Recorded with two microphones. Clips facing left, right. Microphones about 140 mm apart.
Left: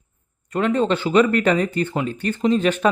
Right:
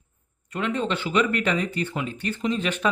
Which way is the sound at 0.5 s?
40° left (ahead or behind).